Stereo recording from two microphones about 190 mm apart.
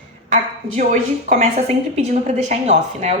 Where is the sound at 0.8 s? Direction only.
40° right (ahead or behind).